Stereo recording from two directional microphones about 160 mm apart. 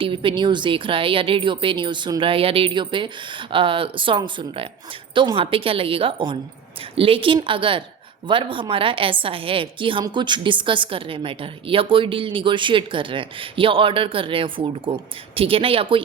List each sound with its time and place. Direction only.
0.0 s a woman's voice: 30° right (ahead or behind)